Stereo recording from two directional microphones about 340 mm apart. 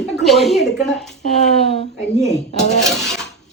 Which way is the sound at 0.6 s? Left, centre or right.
Centre.